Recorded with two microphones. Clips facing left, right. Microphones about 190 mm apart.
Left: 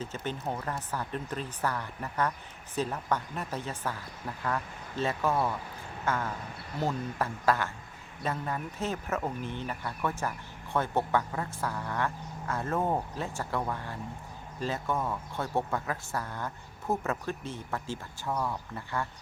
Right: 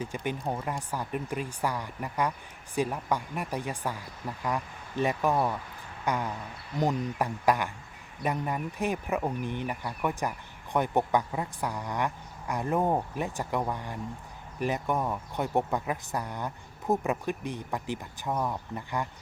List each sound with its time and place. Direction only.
0.0 s speech: 15° right (ahead or behind)